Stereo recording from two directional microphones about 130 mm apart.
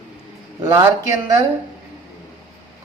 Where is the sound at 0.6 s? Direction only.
30° right (ahead or behind).